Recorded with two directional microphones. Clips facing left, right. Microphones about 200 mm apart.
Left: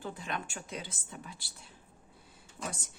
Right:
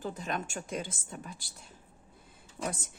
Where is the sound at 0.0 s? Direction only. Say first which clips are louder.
Right 3 dB; 40° right (ahead or behind).